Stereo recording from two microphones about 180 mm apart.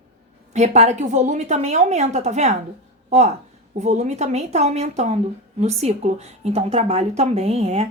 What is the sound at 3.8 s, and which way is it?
Speech, 40° right (ahead or behind).